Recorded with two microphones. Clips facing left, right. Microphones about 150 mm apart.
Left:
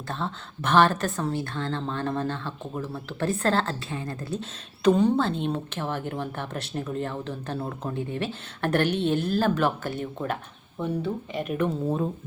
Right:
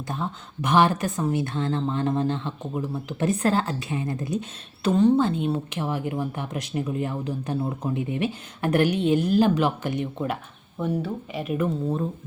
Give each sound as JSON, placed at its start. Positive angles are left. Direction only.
{"t": 0.1, "sound": "speech", "side_deg": -10}
{"t": 4.8, "sound": "speech", "side_deg": 0}
{"t": 10.8, "sound": "speech", "side_deg": -5}